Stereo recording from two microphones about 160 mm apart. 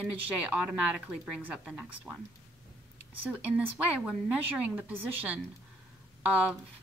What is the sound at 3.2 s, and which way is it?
Speech, 10° right (ahead or behind).